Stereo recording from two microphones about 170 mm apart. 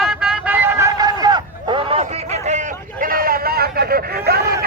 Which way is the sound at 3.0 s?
55° right (ahead or behind).